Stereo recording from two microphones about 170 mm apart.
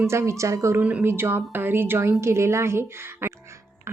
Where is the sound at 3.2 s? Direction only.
15° right (ahead or behind).